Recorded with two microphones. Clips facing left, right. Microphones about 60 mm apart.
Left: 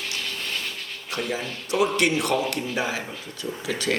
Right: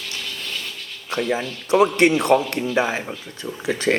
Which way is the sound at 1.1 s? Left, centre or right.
Right.